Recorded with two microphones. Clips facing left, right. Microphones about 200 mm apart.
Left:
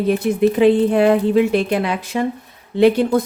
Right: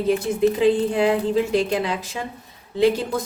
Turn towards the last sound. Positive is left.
turn(degrees=60)  # may be behind; listen again after turning